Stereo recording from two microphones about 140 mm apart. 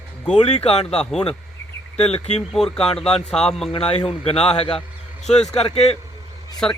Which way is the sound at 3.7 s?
40° left (ahead or behind).